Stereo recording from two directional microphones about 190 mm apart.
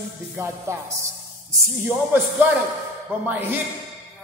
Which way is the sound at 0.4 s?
15° right (ahead or behind).